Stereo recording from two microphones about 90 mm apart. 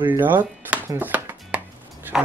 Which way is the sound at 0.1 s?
20° right (ahead or behind).